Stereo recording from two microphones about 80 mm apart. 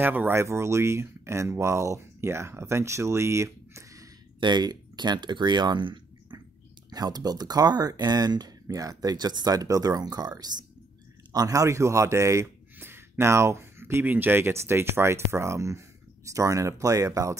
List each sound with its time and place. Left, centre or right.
0.0 s speech: right
4.4 s speech: right
6.9 s speech: right
12.7 s speech: right